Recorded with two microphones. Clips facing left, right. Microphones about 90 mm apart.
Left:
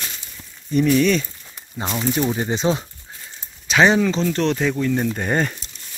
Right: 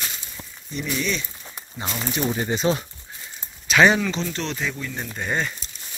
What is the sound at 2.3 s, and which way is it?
Speech, 25° left (ahead or behind).